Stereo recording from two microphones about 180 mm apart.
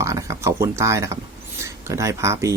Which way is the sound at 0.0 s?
15° right (ahead or behind).